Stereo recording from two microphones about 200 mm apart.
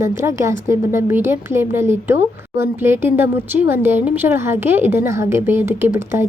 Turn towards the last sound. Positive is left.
turn(degrees=-10)  # may be behind; listen again after turning